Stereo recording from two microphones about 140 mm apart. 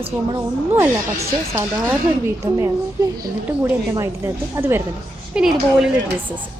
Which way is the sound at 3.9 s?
20° right (ahead or behind).